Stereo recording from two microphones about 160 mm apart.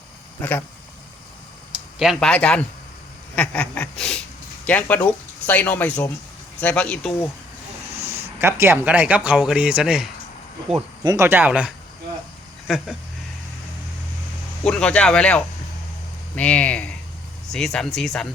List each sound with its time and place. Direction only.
0.4 s speech: 10° left (ahead or behind)
2.0 s speech: centre (ahead or behind)
2.3 s speech: 10° left (ahead or behind)
8.0 s speech: 15° right (ahead or behind)
11.0 s speech: 25° right (ahead or behind)
11.3 s speech: 10° right (ahead or behind)
14.6 s speech: 5° left (ahead or behind)